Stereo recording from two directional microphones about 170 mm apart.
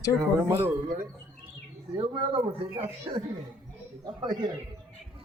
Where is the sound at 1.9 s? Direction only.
30° right (ahead or behind).